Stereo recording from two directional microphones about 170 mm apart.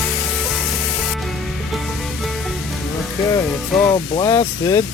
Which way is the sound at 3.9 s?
20° left (ahead or behind).